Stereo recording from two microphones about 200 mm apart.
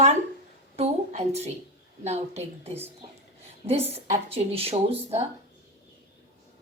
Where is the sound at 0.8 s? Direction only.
30° right (ahead or behind).